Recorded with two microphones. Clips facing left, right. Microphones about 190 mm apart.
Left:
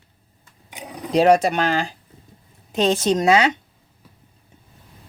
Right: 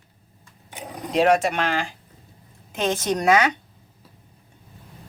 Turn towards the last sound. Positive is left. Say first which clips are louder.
# left 3 dB
turn(degrees=25)  # may be behind; listen again after turning